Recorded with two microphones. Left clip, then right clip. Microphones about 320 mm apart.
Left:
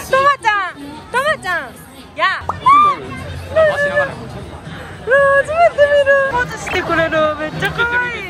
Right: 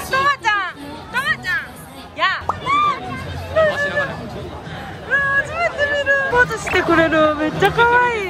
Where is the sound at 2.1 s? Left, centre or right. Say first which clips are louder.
Left 2 dB; centre.